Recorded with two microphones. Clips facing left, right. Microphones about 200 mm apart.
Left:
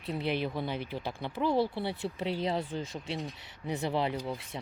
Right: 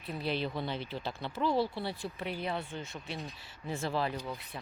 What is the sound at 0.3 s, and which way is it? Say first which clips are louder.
Speech: left 1 dB; 15° left (ahead or behind).